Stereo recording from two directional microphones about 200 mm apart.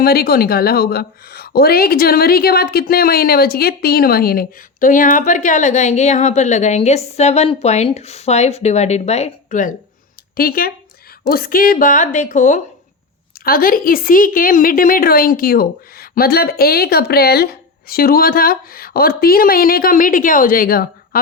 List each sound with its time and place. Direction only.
0.0 s a woman's voice: 50° left (ahead or behind)